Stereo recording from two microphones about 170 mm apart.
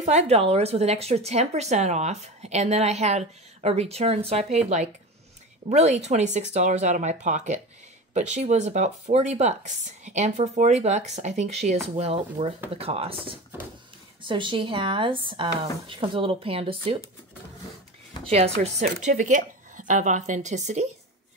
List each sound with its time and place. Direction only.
0.0 s a woman's voice: 40° right (ahead or behind)
14.2 s a woman's voice: 30° right (ahead or behind)
18.2 s speech: 35° right (ahead or behind)